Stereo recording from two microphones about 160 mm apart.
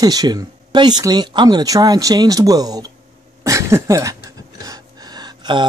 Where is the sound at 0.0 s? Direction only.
25° right (ahead or behind).